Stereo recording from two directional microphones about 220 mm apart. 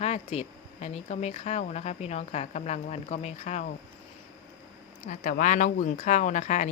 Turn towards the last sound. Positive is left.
turn(degrees=35)  # may be behind; listen again after turning